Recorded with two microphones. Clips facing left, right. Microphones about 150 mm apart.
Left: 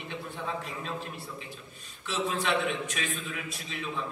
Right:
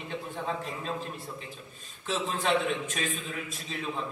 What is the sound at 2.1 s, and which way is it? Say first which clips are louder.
A man's voice: right 1 dB; 45° right (ahead or behind).